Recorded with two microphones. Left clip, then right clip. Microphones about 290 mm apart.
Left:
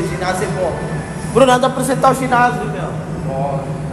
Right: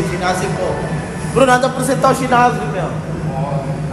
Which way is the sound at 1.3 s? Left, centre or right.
Left.